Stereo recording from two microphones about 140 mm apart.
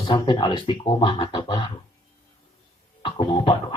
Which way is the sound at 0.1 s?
30° left (ahead or behind).